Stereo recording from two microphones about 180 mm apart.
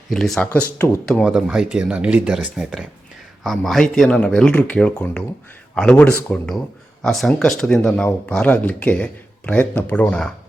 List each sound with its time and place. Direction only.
0.1 s speech: 5° left (ahead or behind)
1.2 s speech: 5° right (ahead or behind)